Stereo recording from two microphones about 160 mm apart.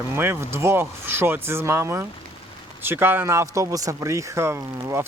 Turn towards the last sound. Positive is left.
turn(degrees=-15)  # may be behind; listen again after turning